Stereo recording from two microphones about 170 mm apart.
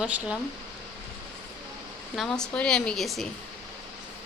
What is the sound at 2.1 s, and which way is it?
Speech, 5° left (ahead or behind).